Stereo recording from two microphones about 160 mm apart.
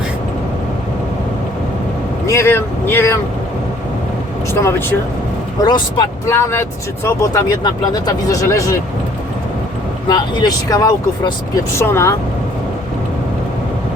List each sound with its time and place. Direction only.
2.2 s speech: 15° left (ahead or behind)
4.5 s speech: 15° left (ahead or behind)
10.1 s speech: 25° left (ahead or behind)